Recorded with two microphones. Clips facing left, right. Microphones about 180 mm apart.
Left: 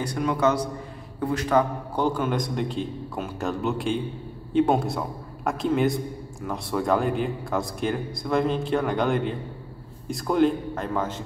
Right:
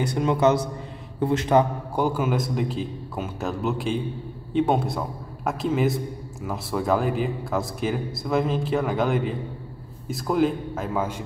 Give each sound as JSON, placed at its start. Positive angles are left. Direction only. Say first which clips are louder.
{"t": 0.0, "sound": "a man's voice", "louder": "right 3 dB", "side_deg": -25}
{"t": 2.0, "sound": "a man's voice", "louder": "right 1 dB", "side_deg": -5}